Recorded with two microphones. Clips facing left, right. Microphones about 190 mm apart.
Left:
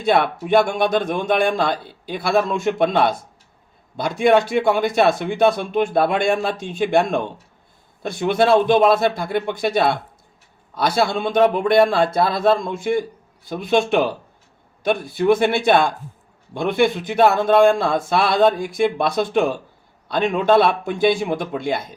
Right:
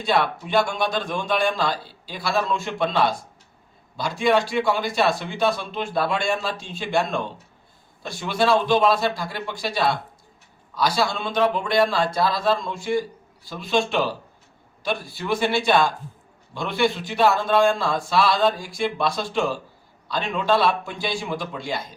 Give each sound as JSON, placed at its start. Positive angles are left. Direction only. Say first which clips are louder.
{"t": 0.0, "sound": "a man's voice", "louder": "left 4 dB", "side_deg": 55}
{"t": 4.2, "sound": "a man's voice", "louder": "left 5 dB", "side_deg": 55}